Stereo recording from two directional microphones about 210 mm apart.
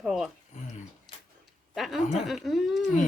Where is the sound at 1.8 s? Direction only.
Centre (ahead or behind).